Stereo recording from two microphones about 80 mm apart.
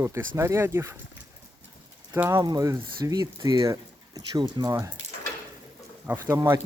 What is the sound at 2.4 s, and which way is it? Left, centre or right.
Speech, right.